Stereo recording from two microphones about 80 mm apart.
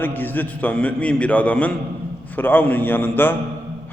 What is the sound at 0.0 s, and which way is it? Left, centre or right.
A man's voice, left.